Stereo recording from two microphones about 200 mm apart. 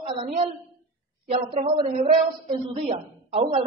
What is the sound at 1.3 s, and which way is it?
Speech, 30° right (ahead or behind).